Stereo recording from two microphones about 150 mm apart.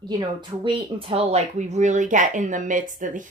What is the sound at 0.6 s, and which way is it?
Speech, 40° right (ahead or behind).